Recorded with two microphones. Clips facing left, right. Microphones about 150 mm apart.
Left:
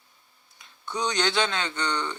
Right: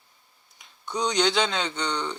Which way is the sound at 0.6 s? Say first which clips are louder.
Right 2 dB; 15° right (ahead or behind).